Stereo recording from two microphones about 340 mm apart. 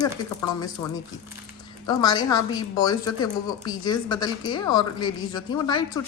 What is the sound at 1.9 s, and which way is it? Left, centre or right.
A woman's voice, centre.